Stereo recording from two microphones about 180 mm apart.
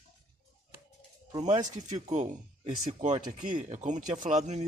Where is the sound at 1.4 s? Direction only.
40° right (ahead or behind).